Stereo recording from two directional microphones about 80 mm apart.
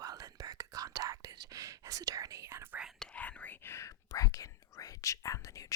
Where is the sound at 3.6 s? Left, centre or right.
Left.